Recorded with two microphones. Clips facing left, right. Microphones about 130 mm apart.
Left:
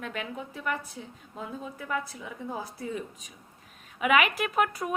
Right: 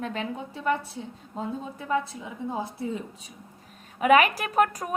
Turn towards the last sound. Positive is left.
turn(degrees=-40)  # may be behind; listen again after turning